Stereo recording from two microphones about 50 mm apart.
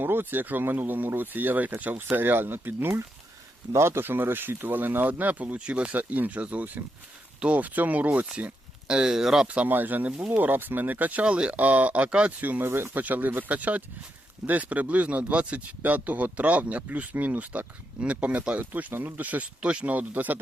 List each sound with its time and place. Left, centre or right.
0.0 s speech: right
3.7 s speech: right
5.5 s speech: right
8.9 s speech: centre
9.6 s speech: right
11.3 s speech: right
12.4 s speech: right
12.6 s speech: right
12.9 s speech: right